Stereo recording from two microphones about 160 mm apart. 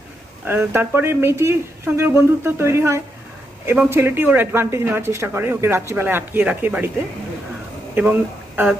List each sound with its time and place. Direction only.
0.4 s speech: 15° right (ahead or behind)
8.6 s speech: 15° right (ahead or behind)